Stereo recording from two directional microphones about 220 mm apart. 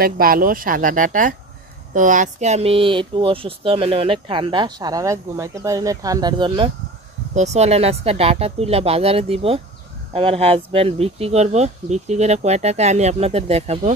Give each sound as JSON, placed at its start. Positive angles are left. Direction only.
{"t": 0.0, "sound": "speech", "side_deg": -40}